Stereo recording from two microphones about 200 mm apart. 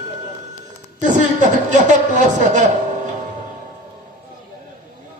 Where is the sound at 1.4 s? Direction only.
40° right (ahead or behind).